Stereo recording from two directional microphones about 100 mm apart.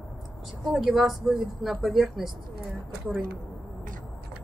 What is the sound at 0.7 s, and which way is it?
Speech, centre (ahead or behind).